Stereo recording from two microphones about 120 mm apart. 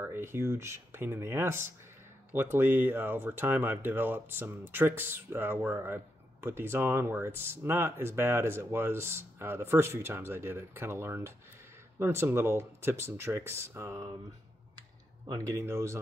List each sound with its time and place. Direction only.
0.0 s speech: 20° right (ahead or behind)
15.2 s speech: 25° right (ahead or behind)